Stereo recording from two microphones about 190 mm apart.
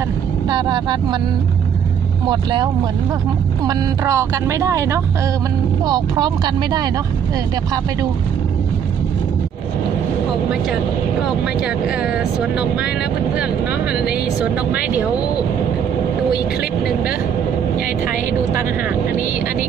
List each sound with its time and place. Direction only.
0.5 s speech: 25° right (ahead or behind)
2.2 s speech: 25° right (ahead or behind)
12.0 s speech: 5° right (ahead or behind)
13.9 s speech: 5° right (ahead or behind)